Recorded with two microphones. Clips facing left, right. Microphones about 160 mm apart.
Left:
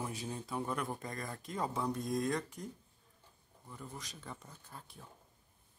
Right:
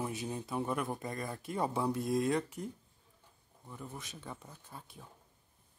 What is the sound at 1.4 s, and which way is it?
Speech, 10° right (ahead or behind).